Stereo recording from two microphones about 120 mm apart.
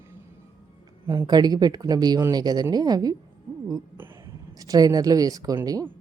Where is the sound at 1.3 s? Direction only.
35° right (ahead or behind).